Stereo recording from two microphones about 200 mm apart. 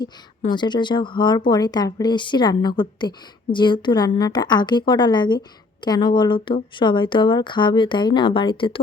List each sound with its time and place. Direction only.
0.5 s speech: 20° left (ahead or behind)